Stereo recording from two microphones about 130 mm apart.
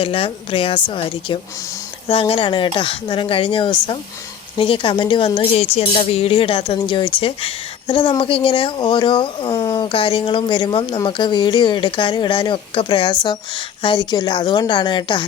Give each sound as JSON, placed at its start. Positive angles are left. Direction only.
{"t": 0.0, "sound": "speech", "side_deg": 45}